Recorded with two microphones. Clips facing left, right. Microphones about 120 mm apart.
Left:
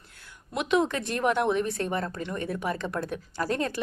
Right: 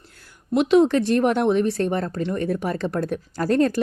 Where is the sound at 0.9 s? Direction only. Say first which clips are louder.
Right 8 dB; 40° right (ahead or behind).